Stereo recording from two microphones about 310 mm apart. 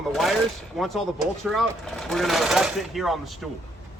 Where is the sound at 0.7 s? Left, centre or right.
Centre.